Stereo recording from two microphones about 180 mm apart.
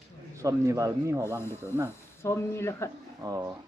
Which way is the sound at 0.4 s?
20° right (ahead or behind).